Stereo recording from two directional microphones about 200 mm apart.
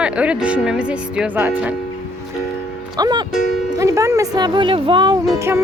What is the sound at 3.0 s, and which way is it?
Speech, 20° right (ahead or behind).